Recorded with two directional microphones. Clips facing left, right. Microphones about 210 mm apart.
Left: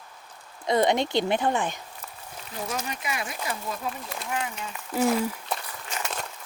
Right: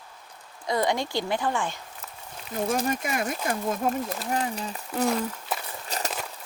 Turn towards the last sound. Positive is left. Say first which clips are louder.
# right 2 dB
turn(degrees=-35)  # may be behind; listen again after turning